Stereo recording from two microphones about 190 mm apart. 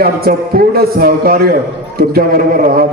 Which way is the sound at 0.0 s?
50° right (ahead or behind).